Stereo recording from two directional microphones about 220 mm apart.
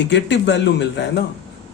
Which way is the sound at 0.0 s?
50° left (ahead or behind).